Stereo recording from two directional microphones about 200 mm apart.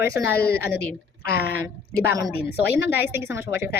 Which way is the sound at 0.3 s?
50° left (ahead or behind).